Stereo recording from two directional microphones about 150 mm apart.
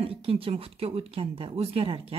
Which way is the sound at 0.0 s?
40° right (ahead or behind).